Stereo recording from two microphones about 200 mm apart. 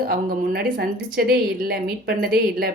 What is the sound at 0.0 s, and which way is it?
Speech, 45° right (ahead or behind).